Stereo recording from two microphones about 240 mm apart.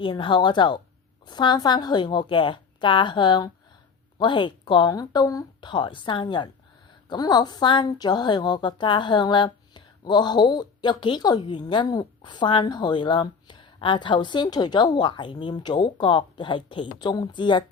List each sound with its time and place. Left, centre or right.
0.0 s a woman's voice: left